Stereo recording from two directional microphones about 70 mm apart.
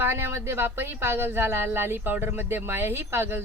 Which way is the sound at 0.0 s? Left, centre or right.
Right.